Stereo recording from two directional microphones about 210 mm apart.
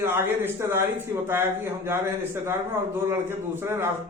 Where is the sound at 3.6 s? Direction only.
10° right (ahead or behind).